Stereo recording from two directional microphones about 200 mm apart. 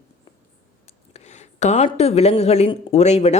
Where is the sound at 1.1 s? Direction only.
35° left (ahead or behind).